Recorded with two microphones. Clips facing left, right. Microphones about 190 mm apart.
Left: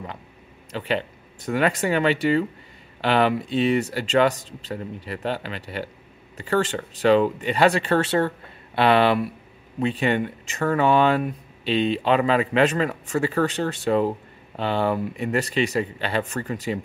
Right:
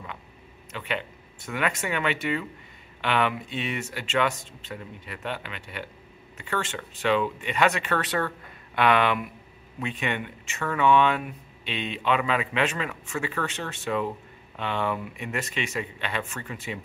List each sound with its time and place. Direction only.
0.7 s speech: 35° left (ahead or behind)